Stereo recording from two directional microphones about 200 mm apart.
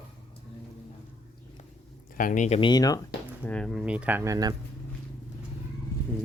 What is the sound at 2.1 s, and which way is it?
Speech, 40° left (ahead or behind).